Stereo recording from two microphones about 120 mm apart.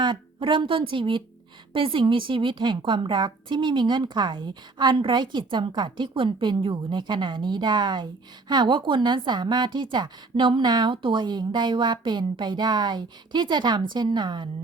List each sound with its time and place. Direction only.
0.0 s a woman's voice: 40° right (ahead or behind)